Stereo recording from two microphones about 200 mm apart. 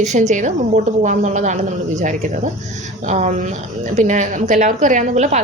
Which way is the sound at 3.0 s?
35° right (ahead or behind).